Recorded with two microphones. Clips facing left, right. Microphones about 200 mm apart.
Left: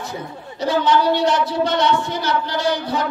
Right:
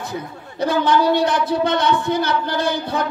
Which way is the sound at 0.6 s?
55° right (ahead or behind).